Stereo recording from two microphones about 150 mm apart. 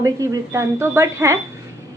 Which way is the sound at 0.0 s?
20° right (ahead or behind).